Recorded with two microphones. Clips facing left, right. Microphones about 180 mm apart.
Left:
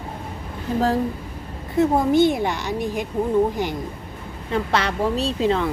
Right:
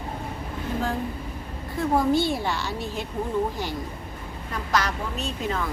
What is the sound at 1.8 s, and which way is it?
A woman's voice, 20° left (ahead or behind).